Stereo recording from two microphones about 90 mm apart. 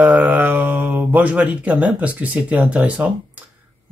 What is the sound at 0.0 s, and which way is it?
Speech, 20° right (ahead or behind).